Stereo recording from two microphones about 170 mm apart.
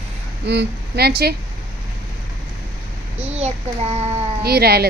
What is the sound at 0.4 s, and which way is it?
Speech, 90° right.